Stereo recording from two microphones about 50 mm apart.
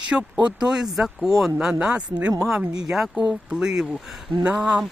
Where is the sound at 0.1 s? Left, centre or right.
Centre.